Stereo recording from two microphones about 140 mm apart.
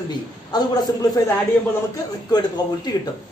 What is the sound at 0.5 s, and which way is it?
Speech, 30° left (ahead or behind).